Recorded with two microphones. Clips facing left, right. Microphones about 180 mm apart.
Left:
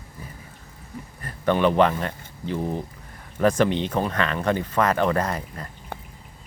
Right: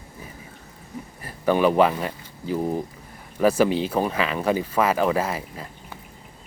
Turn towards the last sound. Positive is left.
turn(degrees=-5)  # may be behind; listen again after turning